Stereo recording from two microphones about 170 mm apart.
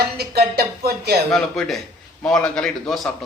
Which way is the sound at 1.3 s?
Centre (ahead or behind).